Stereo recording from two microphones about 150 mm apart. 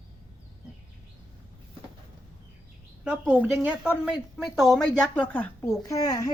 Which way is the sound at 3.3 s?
10° right (ahead or behind).